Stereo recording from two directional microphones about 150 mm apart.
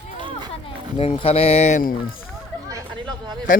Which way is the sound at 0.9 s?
40° left (ahead or behind).